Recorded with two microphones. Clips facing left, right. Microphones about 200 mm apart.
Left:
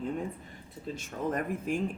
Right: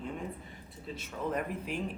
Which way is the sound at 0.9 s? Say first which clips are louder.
Left 2 dB; 45° left (ahead or behind).